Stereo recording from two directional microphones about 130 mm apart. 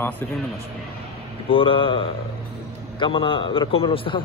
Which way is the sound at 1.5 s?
40° left (ahead or behind).